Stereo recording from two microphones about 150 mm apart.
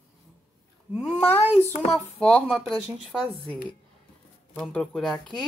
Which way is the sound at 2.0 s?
5° left (ahead or behind).